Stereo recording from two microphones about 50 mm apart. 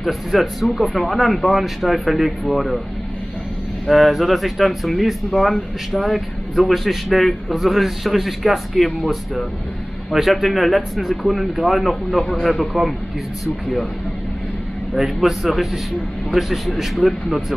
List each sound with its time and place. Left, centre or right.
0.0 s speech: centre
3.8 s speech: centre
12.7 s speech: centre
15.0 s speech: centre